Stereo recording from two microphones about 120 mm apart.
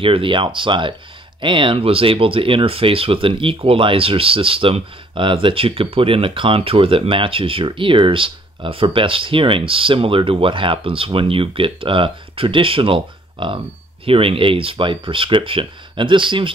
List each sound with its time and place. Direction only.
0.0 s speech: 45° right (ahead or behind)